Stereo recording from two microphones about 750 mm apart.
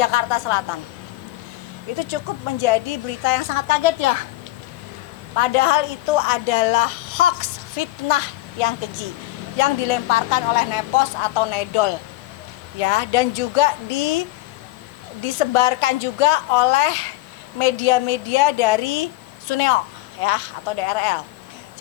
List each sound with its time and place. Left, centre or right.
0.0 s a woman's voice: left
2.0 s a woman's voice: left
5.4 s a woman's voice: left